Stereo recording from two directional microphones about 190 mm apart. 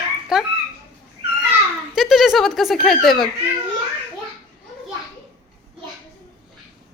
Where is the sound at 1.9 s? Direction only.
Centre (ahead or behind).